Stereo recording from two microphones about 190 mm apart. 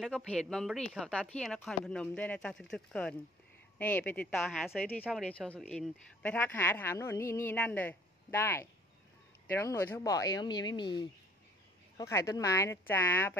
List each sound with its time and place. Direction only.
0.0 s a woman's voice: 5° left (ahead or behind)